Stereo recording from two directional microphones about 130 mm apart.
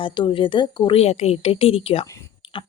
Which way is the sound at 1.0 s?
55° left (ahead or behind).